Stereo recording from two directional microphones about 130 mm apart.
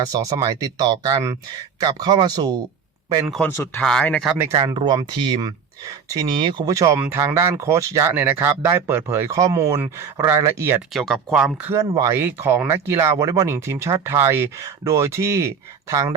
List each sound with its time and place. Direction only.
0.1 s speech: 25° right (ahead or behind)
3.4 s speech: 20° left (ahead or behind)
3.8 s speech: 10° left (ahead or behind)
4.5 s speech: 35° right (ahead or behind); by 10.8 s 20° right (ahead or behind)
10.9 s speech: centre (ahead or behind)
11.7 s speech: 25° right (ahead or behind)